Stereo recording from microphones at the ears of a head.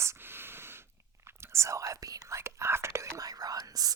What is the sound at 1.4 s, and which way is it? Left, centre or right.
Whispering, right.